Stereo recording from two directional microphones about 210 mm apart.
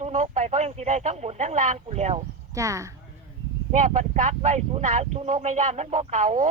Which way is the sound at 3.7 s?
35° right (ahead or behind).